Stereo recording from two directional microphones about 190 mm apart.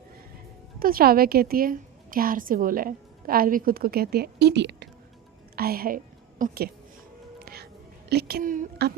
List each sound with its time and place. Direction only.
0.8 s a woman's voice: 50° right (ahead or behind)
5.5 s a woman's voice: 50° right (ahead or behind)
7.4 s music: 55° right (ahead or behind)
8.1 s speech: 55° right (ahead or behind)